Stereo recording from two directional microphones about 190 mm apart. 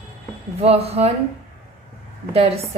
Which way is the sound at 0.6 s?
35° right (ahead or behind).